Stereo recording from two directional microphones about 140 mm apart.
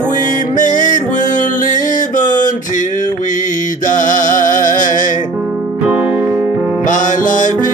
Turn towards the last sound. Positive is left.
turn(degrees=65)  # may be behind; listen again after turning